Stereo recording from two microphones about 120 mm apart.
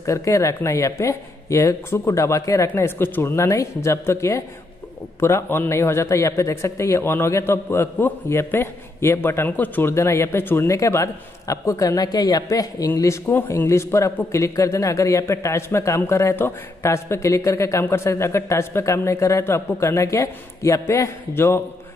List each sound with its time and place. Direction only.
0.0 s a man's voice: 25° left (ahead or behind)